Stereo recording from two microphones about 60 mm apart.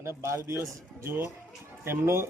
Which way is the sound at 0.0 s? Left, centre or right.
Right.